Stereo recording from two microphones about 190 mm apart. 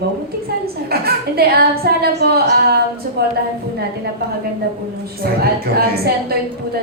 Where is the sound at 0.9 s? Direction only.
55° right (ahead or behind).